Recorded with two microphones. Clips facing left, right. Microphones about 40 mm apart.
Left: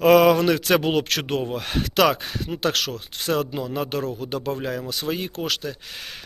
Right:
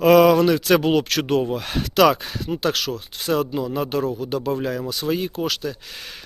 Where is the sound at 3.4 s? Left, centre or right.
Left.